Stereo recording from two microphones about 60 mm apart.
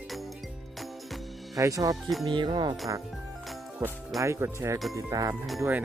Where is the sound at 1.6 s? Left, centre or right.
Right.